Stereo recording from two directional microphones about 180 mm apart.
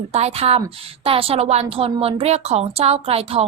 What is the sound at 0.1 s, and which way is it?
A woman's voice, 35° right (ahead or behind).